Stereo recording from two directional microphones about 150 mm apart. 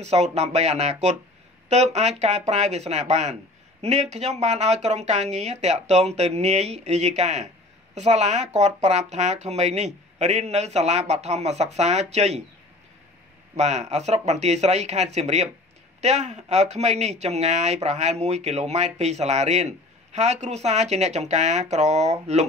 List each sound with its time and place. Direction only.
0.0 s speech: 45° right (ahead or behind)
13.6 s speech: 50° right (ahead or behind)